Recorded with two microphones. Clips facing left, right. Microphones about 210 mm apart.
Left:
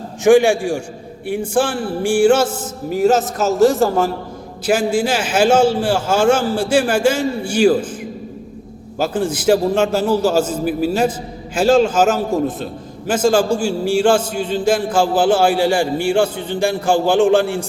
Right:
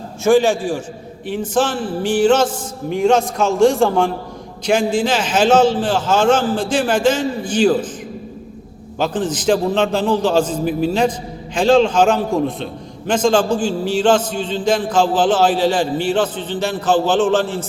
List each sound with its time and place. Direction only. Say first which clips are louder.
0.3 s a man's voice: left 2 dB; 15° left (ahead or behind)
9.0 s a man's voice: left 1 dB; 10° left (ahead or behind)